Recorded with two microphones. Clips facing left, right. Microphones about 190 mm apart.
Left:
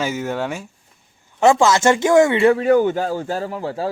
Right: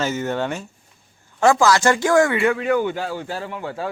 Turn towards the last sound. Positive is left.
turn(degrees=35)  # may be behind; listen again after turning